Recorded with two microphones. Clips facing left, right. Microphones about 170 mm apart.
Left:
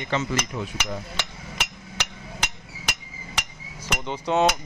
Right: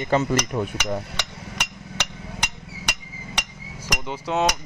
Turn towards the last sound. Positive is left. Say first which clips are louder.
# left 2 dB
turn(degrees=0)  # may be behind; listen again after turning